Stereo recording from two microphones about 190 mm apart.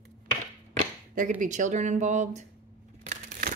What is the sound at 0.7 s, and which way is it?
Speech, 45° right (ahead or behind).